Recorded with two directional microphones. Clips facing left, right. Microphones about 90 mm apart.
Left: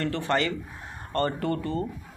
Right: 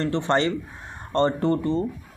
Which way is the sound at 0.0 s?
25° right (ahead or behind).